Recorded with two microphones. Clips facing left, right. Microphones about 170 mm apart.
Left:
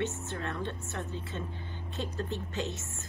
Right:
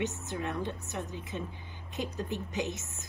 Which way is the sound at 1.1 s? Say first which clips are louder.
Even; 15° right (ahead or behind).